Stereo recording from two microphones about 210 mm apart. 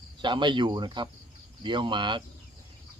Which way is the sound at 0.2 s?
20° right (ahead or behind).